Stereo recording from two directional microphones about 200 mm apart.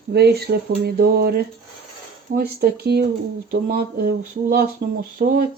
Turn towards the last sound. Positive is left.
turn(degrees=-45)  # may be behind; listen again after turning